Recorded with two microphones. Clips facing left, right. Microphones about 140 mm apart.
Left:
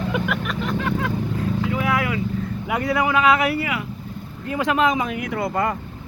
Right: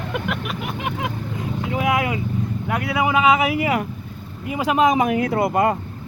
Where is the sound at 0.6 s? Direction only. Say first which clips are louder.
Left 3 dB; 15° right (ahead or behind).